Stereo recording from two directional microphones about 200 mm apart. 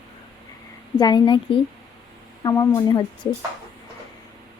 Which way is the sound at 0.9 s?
20° left (ahead or behind).